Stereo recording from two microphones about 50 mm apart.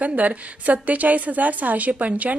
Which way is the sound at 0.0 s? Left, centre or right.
Right.